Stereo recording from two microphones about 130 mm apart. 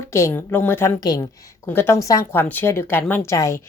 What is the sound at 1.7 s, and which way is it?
A woman's voice, 15° left (ahead or behind).